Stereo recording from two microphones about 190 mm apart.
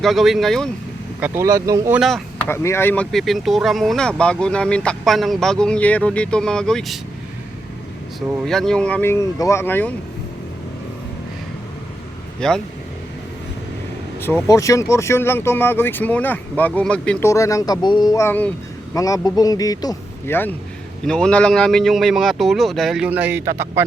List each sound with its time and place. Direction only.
0.0 s speech: centre (ahead or behind)
1.2 s speech: 15° right (ahead or behind)
2.0 s speech: centre (ahead or behind)
2.5 s speech: 10° left (ahead or behind)
8.4 s speech: centre (ahead or behind)
12.4 s speech: 5° left (ahead or behind)
14.2 s a man's voice: 10° left (ahead or behind); by 23.8 s 15° right (ahead or behind)